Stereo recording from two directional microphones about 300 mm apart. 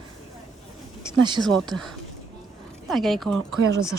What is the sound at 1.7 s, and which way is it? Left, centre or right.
Speech, centre.